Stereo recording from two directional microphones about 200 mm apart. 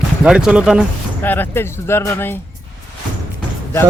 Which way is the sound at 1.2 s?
10° left (ahead or behind).